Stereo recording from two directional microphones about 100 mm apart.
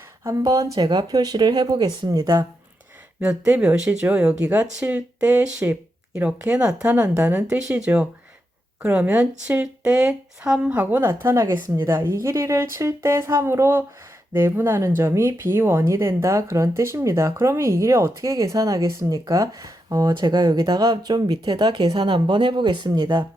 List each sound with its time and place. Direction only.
0.3 s speech: 35° right (ahead or behind)
3.2 s speech: 20° right (ahead or behind)
8.8 s speech: 15° right (ahead or behind); by 20.1 s 35° right (ahead or behind)
20.1 s speech: 45° right (ahead or behind)